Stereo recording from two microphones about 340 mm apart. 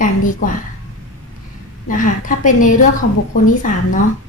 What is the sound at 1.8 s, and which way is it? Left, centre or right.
A woman's voice, left.